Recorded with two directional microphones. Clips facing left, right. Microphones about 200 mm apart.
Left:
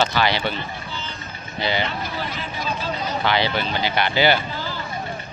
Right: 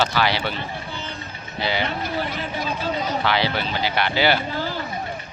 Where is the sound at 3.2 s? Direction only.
5° right (ahead or behind).